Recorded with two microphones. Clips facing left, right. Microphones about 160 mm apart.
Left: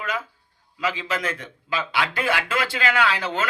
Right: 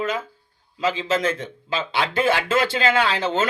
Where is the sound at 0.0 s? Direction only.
25° right (ahead or behind).